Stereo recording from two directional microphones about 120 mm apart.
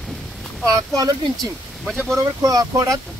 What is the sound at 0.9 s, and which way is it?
Speech, 35° right (ahead or behind).